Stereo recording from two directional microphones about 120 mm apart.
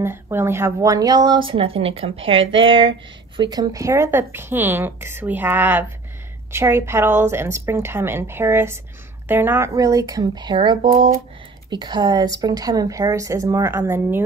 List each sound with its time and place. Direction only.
0.0 s a woman's voice: 20° right (ahead or behind); by 3.4 s 45° right (ahead or behind)
3.4 s speech: 30° right (ahead or behind)
9.8 s speech: 30° right (ahead or behind)